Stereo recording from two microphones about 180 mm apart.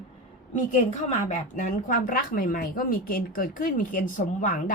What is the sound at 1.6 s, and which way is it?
Speech, 45° left (ahead or behind).